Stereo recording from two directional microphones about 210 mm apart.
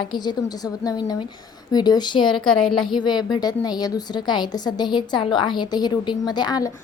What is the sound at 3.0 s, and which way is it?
A woman's voice, 20° left (ahead or behind).